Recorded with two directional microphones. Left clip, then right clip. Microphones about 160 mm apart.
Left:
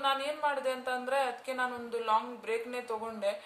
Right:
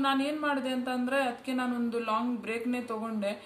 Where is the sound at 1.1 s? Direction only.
10° left (ahead or behind).